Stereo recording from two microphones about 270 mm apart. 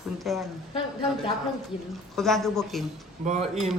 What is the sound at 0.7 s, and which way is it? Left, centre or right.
Speech, centre.